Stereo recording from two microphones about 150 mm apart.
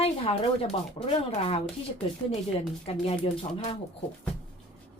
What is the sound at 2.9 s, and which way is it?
Speech, 40° left (ahead or behind).